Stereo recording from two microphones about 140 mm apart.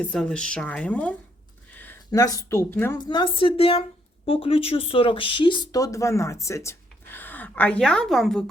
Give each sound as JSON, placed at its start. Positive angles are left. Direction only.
{"t": 0.0, "sound": "speech", "side_deg": 5}
{"t": 1.7, "sound": "a sound", "side_deg": 15}
{"t": 2.1, "sound": "speech", "side_deg": 25}
{"t": 2.9, "sound": "speech", "side_deg": 30}